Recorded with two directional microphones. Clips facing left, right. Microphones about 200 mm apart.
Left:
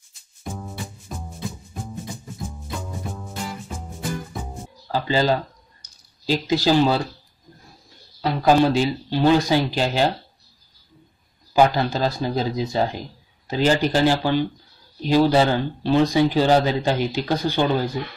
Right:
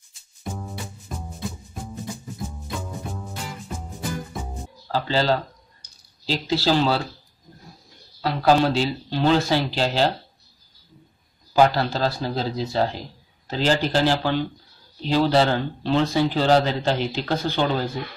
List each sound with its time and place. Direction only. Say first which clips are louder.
0.4 s music: even; centre (ahead or behind)
4.9 s speech: left 1 dB; 15° left (ahead or behind)
8.2 s speech: left 2 dB; 15° left (ahead or behind)
11.5 s speech: left 1 dB; 15° left (ahead or behind)